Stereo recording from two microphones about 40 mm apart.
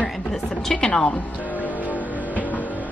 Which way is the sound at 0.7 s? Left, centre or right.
Centre.